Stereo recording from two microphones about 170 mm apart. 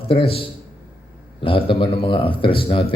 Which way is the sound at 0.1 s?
35° left (ahead or behind).